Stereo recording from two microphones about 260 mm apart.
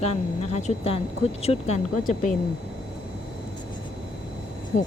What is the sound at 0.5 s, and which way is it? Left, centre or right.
A woman's voice, left.